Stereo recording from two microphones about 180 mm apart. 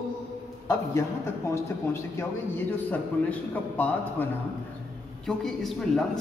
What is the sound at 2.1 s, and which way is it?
A man's voice, 10° left (ahead or behind).